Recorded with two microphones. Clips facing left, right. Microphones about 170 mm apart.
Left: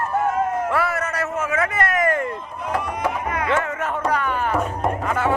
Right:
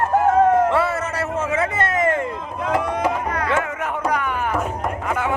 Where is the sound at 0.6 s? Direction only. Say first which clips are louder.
Right 3 dB; 25° right (ahead or behind).